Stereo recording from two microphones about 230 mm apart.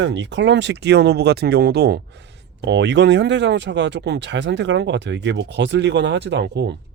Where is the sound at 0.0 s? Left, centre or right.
Right.